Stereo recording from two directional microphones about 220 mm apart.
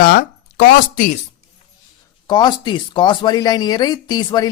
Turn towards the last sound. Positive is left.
turn(degrees=20)  # may be behind; listen again after turning